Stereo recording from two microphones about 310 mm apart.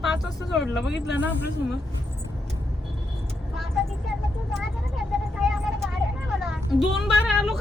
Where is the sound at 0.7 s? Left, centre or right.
Left.